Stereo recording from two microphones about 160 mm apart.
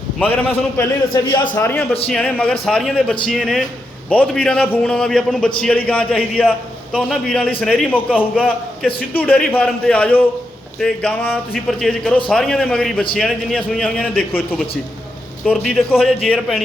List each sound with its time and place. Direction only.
0.2 s a man's voice: 10° left (ahead or behind)
0.8 s a man's voice: 25° left (ahead or behind)
1.5 s a man's voice: 10° left (ahead or behind)
9.1 s a man's voice: 10° left (ahead or behind)
15.4 s a man's voice: 5° right (ahead or behind)